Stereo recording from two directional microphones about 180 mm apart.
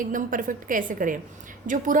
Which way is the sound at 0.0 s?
50° right (ahead or behind).